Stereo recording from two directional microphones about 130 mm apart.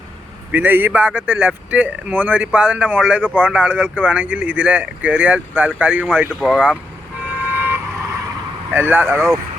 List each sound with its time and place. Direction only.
0.5 s speech: 15° right (ahead or behind)
7.5 s vehicle: 15° right (ahead or behind)
8.7 s speech: 15° right (ahead or behind)